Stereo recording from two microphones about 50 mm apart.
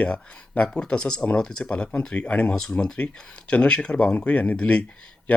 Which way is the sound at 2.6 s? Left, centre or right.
Centre.